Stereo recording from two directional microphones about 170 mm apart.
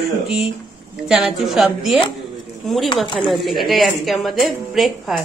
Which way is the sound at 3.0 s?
30° left (ahead or behind).